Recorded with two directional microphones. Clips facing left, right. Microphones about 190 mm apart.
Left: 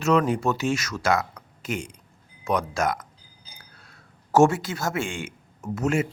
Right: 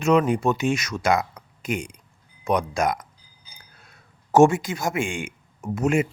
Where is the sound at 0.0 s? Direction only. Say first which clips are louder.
Right 2 dB; 15° right (ahead or behind).